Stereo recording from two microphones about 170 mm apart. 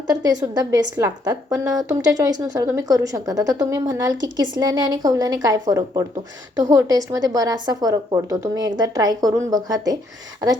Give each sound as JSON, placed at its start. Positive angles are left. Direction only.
{"t": 0.1, "sound": "a woman's voice", "side_deg": -20}